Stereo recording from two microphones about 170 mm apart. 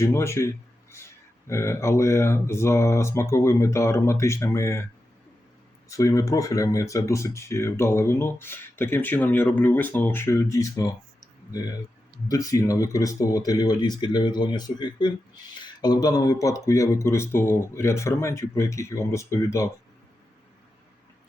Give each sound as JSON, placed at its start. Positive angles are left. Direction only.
{"t": 0.0, "sound": "speech", "side_deg": 15}
{"t": 5.9, "sound": "speech", "side_deg": 20}
{"t": 12.3, "sound": "speech", "side_deg": 20}